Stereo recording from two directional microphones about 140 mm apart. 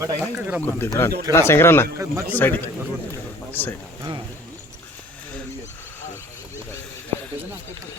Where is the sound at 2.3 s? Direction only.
15° left (ahead or behind).